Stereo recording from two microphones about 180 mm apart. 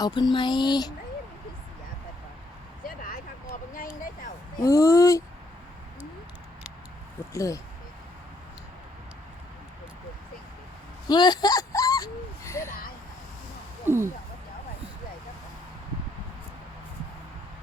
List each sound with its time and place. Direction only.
0.0 s speech: 25° left (ahead or behind)
2.8 s vehicle: 50° left (ahead or behind)
4.0 s a sound: 50° left (ahead or behind)
4.6 s speech: 20° left (ahead or behind)
7.3 s speech: 20° left (ahead or behind)
11.1 s a sound: 25° left (ahead or behind)
13.8 s speech: 15° right (ahead or behind)